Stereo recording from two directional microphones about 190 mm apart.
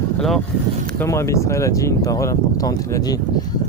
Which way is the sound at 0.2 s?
Centre (ahead or behind).